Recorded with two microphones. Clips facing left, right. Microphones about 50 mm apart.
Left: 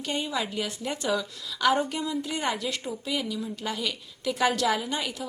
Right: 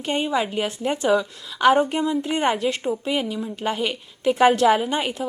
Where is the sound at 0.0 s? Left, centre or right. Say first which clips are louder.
Right 7 dB; right.